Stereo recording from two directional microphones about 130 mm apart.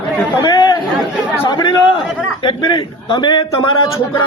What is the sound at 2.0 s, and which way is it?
Speech, 5° right (ahead or behind).